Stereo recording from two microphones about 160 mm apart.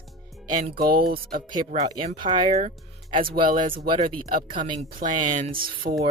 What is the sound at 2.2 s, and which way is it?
Speech, 30° right (ahead or behind).